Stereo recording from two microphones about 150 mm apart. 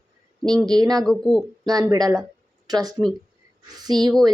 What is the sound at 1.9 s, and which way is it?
A woman's voice, 25° right (ahead or behind).